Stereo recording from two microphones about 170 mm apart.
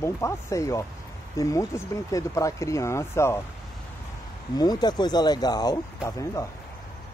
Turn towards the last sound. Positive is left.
turn(degrees=20)  # may be behind; listen again after turning